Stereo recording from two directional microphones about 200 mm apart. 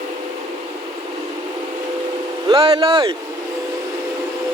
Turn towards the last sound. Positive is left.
turn(degrees=-25)  # may be behind; listen again after turning